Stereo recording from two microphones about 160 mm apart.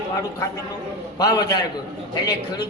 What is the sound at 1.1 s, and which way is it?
Speech, 25° left (ahead or behind).